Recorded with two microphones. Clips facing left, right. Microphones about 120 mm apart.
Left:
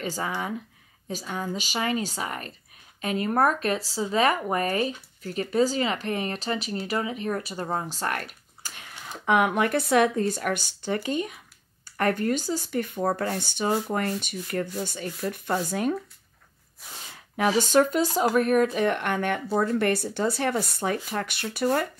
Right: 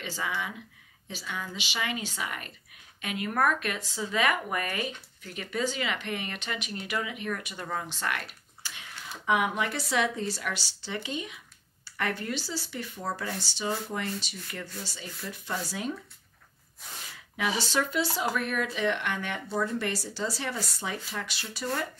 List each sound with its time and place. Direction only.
0.0 s speech: 45° left (ahead or behind)
17.4 s speech: 45° left (ahead or behind)